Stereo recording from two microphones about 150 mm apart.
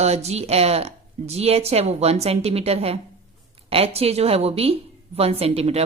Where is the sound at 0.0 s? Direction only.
45° right (ahead or behind).